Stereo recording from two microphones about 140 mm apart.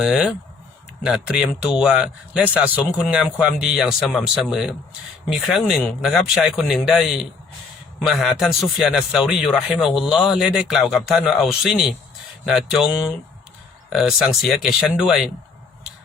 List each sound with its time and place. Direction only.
0.0 s speech: 5° right (ahead or behind)